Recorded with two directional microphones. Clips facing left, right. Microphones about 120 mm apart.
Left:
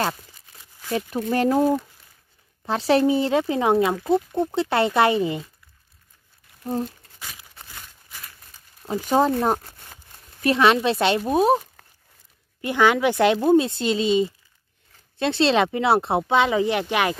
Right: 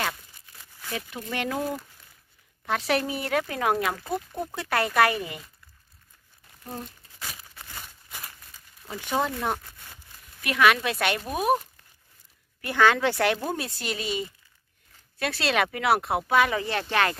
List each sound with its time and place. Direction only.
0.8 s speech: 35° left (ahead or behind)
6.6 s speech: 30° left (ahead or behind)
8.8 s speech: 35° left (ahead or behind)
12.6 s speech: 15° left (ahead or behind)